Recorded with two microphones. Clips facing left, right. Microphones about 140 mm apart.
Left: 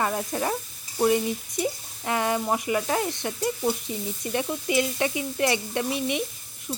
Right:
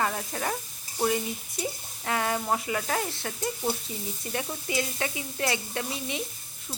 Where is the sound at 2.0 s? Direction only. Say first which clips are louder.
Left 3 dB; 20° left (ahead or behind).